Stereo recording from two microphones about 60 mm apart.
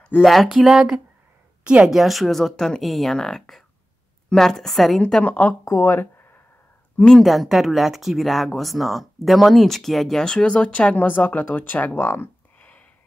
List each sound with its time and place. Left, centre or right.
0.2 s a woman's voice: centre
1.9 s speech: centre
5.2 s speech: left
5.7 s speech: left
7.0 s speech: centre
7.2 s speech: centre
11.1 s speech: left
12.5 s a sound: left